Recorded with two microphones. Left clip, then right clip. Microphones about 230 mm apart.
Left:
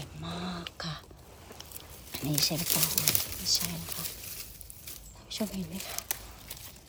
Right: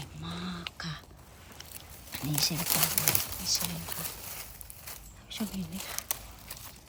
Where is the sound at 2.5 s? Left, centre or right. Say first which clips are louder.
Even; centre.